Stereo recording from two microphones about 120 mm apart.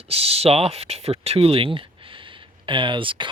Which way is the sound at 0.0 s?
55° right (ahead or behind).